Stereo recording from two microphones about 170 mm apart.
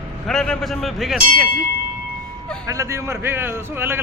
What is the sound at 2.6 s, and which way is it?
A man's voice, 20° right (ahead or behind).